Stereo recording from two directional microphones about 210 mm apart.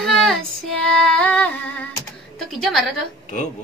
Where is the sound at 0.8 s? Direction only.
5° left (ahead or behind).